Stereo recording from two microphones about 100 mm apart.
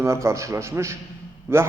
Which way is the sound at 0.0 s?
30° right (ahead or behind).